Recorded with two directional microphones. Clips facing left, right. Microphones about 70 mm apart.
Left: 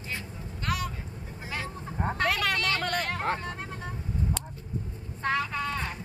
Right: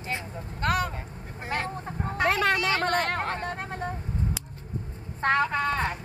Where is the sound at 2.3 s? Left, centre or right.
Right.